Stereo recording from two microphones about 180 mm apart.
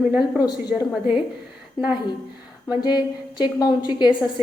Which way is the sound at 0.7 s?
5° right (ahead or behind).